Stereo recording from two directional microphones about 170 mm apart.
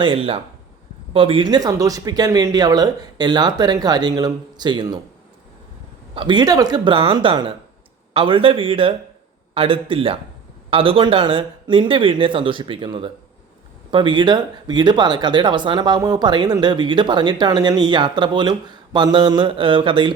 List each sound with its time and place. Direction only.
0.0 s speech: 30° right (ahead or behind)
6.1 s speech: 25° right (ahead or behind)